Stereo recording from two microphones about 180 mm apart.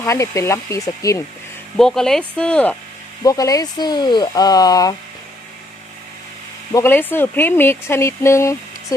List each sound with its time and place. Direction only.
0.0 s speech: 15° left (ahead or behind)
1.7 s speech: 5° left (ahead or behind)
3.2 s speech: 20° left (ahead or behind)
6.7 s speech: 10° left (ahead or behind)